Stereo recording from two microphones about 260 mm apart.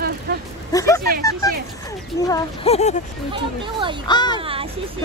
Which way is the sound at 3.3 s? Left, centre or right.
Centre.